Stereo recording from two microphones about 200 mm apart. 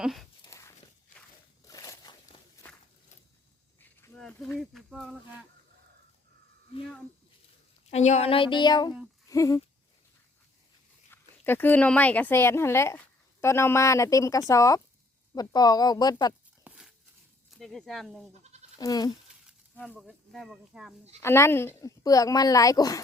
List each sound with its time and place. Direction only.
0.0 s speech: centre (ahead or behind)
0.4 s walk: 15° left (ahead or behind)
1.6 s a sound: 15° left (ahead or behind)
3.8 s a sound: 10° left (ahead or behind)
4.5 s speech: centre (ahead or behind)
7.9 s speech: 35° left (ahead or behind)
9.3 s a sound: 15° left (ahead or behind)
11.1 s speech: 10° left (ahead or behind)
16.6 s dog: 5° right (ahead or behind)
17.5 s speech: centre (ahead or behind)
18.8 s speech: 20° left (ahead or behind)
19.9 s speech: 5° right (ahead or behind)
21.2 s speech: 15° left (ahead or behind)